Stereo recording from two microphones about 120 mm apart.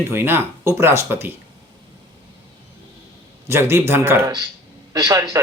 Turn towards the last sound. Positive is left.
turn(degrees=-30)  # may be behind; listen again after turning